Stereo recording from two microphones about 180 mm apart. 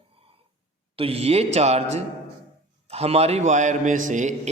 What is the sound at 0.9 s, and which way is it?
A man's voice, 35° right (ahead or behind).